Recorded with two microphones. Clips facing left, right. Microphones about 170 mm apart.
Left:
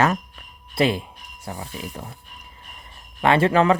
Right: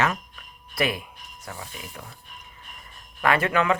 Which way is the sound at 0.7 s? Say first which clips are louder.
Left 6 dB; 30° left (ahead or behind).